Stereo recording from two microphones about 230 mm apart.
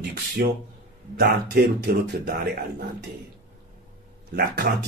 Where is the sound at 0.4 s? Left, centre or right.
Right.